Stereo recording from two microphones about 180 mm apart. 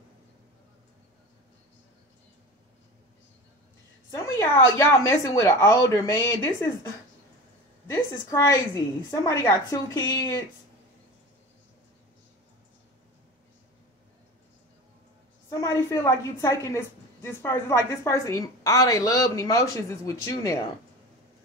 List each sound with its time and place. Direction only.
4.1 s a woman's voice: 15° left (ahead or behind)
8.3 s a woman's voice: 15° left (ahead or behind)
15.5 s a woman's voice: 15° left (ahead or behind)